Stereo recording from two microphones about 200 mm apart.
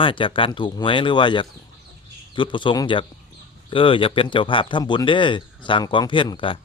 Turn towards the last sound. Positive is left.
turn(degrees=25)  # may be behind; listen again after turning